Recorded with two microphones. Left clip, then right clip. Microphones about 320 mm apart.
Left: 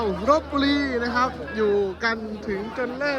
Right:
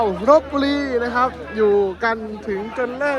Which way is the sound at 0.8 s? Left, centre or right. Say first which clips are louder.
Right 4 dB; centre.